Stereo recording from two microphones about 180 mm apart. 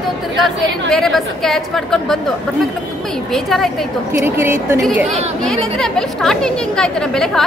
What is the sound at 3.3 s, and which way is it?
Speech, centre (ahead or behind).